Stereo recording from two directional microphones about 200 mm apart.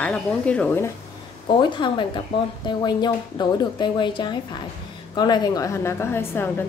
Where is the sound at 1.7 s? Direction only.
25° left (ahead or behind).